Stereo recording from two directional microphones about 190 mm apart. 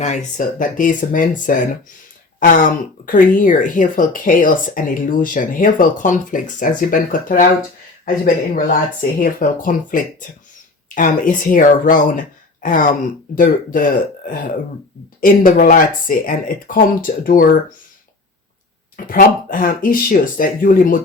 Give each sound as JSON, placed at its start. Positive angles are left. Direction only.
{"t": 0.0, "sound": "speech", "side_deg": 40}
{"t": 15.2, "sound": "speech", "side_deg": 45}
{"t": 18.9, "sound": "speech", "side_deg": 45}